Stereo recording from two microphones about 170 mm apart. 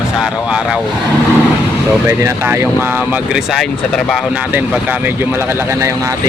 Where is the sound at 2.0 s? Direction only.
15° right (ahead or behind).